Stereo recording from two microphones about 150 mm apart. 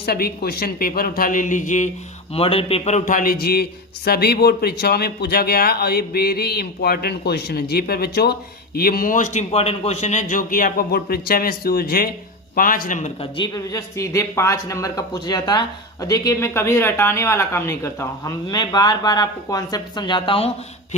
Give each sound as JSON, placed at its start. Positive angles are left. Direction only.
{"t": 0.0, "sound": "speech", "side_deg": 90}
{"t": 2.3, "sound": "a man's voice", "side_deg": 40}
{"t": 12.5, "sound": "speech", "side_deg": 70}
{"t": 13.3, "sound": "speech", "side_deg": 30}